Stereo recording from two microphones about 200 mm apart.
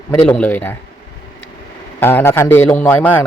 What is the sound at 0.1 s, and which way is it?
Speech, 10° left (ahead or behind).